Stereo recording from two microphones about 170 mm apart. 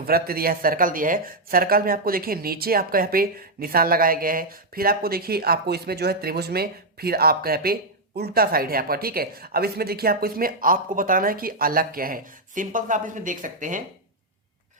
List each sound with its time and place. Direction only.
0.0 s speech: 60° right (ahead or behind)